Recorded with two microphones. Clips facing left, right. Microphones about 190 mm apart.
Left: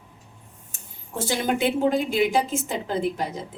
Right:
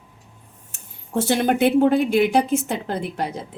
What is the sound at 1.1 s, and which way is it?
A woman's voice, 65° right (ahead or behind).